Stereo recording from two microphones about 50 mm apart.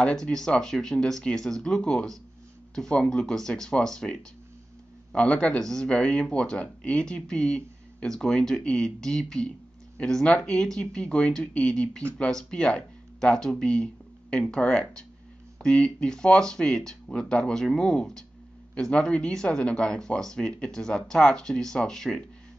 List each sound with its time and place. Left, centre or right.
0.0 s speech: centre
11.3 s speech: centre